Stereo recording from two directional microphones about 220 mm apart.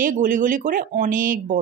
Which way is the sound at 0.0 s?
35° right (ahead or behind).